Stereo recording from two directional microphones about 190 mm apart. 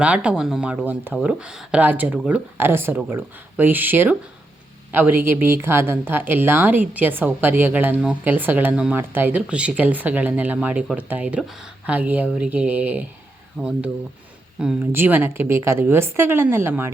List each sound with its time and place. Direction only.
0.0 s speech: 5° right (ahead or behind)